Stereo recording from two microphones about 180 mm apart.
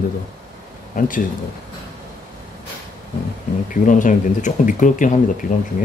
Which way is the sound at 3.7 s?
45° left (ahead or behind).